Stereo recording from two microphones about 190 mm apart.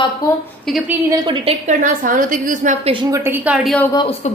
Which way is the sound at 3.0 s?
15° right (ahead or behind).